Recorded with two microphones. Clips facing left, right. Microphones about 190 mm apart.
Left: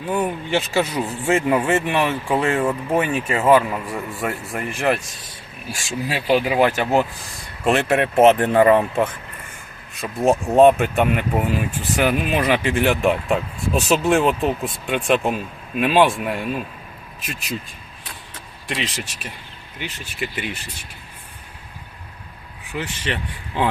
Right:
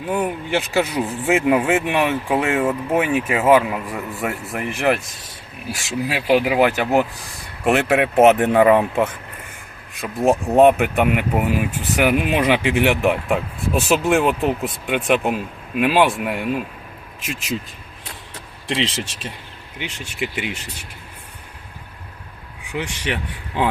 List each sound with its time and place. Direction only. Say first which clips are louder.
0.0 s speech: even; 10° right (ahead or behind)
2.4 s speech: even; centre (ahead or behind)
2.9 s speech: right 2 dB; 15° right (ahead or behind)
4.5 s speech: right 2 dB; 15° right (ahead or behind)
10.5 s speech: left 1 dB; 15° right (ahead or behind)
18.7 s speech: right 4 dB; 30° right (ahead or behind)
19.8 s speech: right 2 dB; 20° right (ahead or behind)
22.7 s speech: right 1 dB; 10° right (ahead or behind)